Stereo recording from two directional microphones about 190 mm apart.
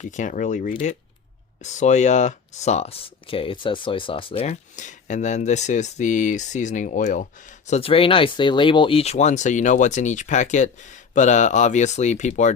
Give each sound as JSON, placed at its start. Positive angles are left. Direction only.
{"t": 0.0, "sound": "speech", "side_deg": 40}
{"t": 7.7, "sound": "speech", "side_deg": 30}